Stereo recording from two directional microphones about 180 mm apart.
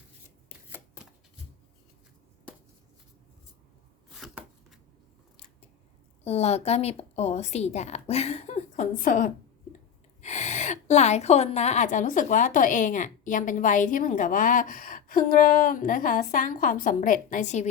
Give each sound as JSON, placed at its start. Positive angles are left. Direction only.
{"t": 4.1, "sound": "chopping", "side_deg": 0}
{"t": 6.2, "sound": "a woman's voice", "side_deg": 35}